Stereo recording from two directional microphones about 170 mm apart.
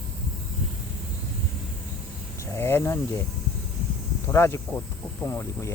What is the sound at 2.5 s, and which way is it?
Speech, 15° left (ahead or behind).